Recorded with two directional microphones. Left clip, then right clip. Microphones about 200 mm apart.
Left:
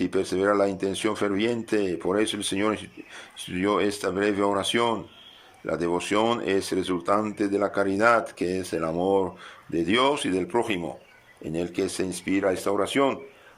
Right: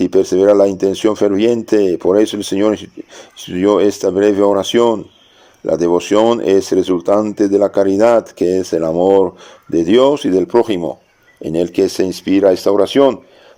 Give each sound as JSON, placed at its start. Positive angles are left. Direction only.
{"t": 0.0, "sound": "speech", "side_deg": -35}